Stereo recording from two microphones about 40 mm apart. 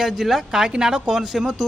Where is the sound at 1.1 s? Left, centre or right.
Centre.